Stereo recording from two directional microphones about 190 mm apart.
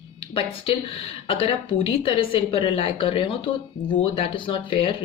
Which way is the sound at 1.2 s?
25° left (ahead or behind).